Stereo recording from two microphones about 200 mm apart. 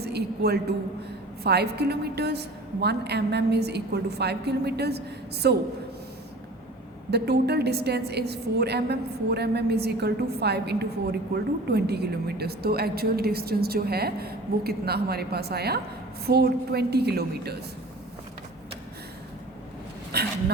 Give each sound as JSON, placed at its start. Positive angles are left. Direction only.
{"t": 0.0, "sound": "a sound", "side_deg": -55}
{"t": 1.5, "sound": "a woman's voice", "side_deg": -55}
{"t": 7.1, "sound": "a woman's voice", "side_deg": -55}
{"t": 20.1, "sound": "speech", "side_deg": -55}